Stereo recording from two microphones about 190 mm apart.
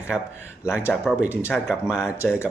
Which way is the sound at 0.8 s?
15° left (ahead or behind).